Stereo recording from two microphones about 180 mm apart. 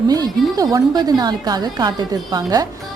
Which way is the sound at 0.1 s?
20° right (ahead or behind).